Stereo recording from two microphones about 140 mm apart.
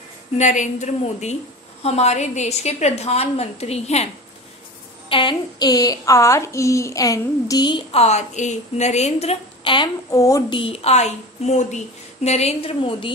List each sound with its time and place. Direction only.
0.4 s a woman's voice: 60° left (ahead or behind)
5.1 s speech: 35° left (ahead or behind)
7.9 s a woman's voice: 50° left (ahead or behind)
10.1 s speech: 20° left (ahead or behind)
10.5 s a woman's voice: 40° left (ahead or behind)